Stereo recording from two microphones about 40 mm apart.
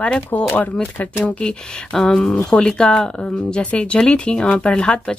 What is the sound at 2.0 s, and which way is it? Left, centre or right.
Speech, centre.